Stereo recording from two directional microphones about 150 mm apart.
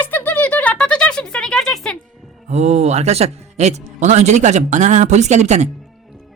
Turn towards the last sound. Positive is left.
turn(degrees=-50)  # may be behind; listen again after turning